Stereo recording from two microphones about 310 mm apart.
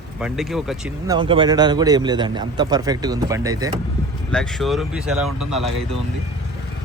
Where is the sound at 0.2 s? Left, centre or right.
Centre.